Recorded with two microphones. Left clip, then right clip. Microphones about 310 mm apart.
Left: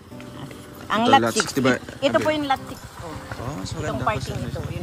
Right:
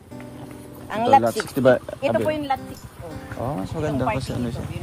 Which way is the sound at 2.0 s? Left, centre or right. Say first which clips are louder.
Left 1 dB; left.